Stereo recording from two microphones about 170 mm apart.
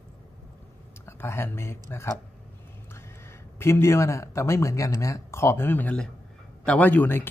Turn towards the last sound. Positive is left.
turn(degrees=10)  # may be behind; listen again after turning